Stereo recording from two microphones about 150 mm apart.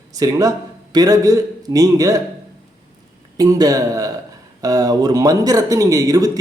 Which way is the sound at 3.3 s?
25° right (ahead or behind).